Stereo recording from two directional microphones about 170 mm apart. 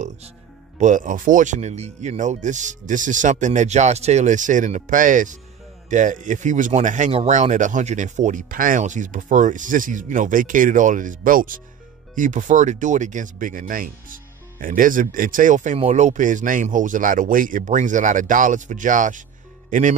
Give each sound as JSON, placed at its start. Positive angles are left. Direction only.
{"t": 0.7, "sound": "speech", "side_deg": -45}